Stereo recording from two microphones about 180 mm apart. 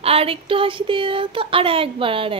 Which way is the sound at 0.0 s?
35° right (ahead or behind).